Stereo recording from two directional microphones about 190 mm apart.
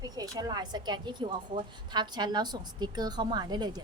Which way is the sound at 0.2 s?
20° right (ahead or behind).